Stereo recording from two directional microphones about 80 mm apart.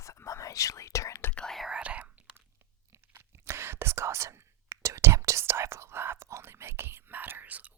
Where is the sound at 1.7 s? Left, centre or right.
Centre.